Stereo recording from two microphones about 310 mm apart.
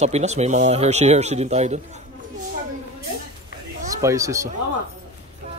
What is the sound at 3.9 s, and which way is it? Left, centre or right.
Speech, centre.